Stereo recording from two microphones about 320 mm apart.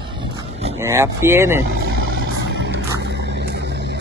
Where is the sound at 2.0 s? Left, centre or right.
Right.